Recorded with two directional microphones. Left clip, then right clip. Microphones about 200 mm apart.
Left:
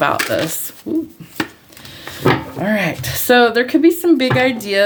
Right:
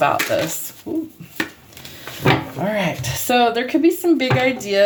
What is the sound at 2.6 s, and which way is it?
Speech, 35° left (ahead or behind).